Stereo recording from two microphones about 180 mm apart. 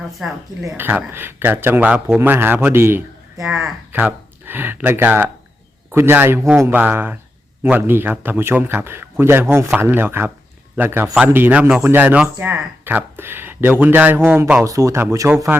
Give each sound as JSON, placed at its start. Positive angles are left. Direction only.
{"t": 0.0, "sound": "a man's voice", "side_deg": -5}